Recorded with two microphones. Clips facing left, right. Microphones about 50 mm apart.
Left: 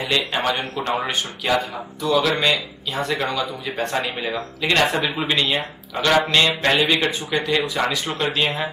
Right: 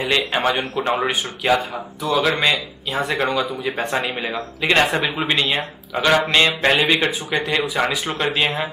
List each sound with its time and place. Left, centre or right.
0.0 s speech: right